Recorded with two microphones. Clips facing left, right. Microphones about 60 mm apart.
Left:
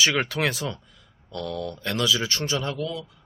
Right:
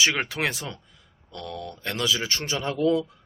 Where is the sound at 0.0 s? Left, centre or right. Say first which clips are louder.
Left 1 dB; right.